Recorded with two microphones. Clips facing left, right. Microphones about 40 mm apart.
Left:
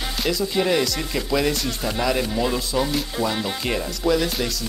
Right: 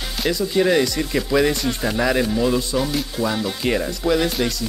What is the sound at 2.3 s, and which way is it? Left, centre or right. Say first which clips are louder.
Speech: right 4 dB; centre.